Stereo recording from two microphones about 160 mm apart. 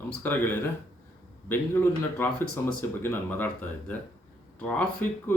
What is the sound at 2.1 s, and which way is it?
Speech, 10° left (ahead or behind).